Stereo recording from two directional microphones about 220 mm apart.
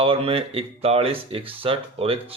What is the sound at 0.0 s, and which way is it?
Speech, 25° right (ahead or behind).